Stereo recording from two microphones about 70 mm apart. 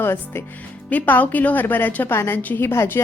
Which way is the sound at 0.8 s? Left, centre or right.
Left.